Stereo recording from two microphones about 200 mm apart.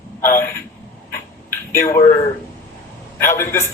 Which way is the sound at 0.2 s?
10° left (ahead or behind).